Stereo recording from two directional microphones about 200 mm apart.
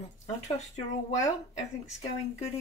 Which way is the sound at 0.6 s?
35° left (ahead or behind).